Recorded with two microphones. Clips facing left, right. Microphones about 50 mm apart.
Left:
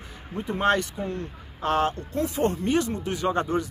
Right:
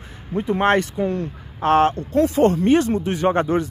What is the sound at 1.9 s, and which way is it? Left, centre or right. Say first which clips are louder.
Speech: right 9 dB; right.